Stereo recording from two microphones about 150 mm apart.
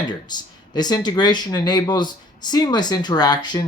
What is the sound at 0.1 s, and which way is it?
Speech, 30° left (ahead or behind).